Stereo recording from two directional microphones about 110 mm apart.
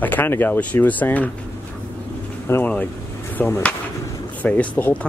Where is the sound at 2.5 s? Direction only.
25° left (ahead or behind).